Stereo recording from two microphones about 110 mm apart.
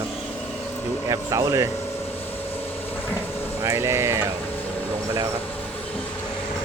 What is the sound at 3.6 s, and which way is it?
Speech, 25° right (ahead or behind).